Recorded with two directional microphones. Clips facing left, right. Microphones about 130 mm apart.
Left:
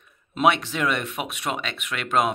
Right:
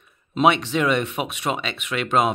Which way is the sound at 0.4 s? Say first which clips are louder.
Right 3 dB; centre (ahead or behind).